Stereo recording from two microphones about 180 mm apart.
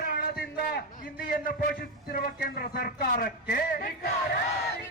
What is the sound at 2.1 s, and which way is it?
Speech, 55° left (ahead or behind).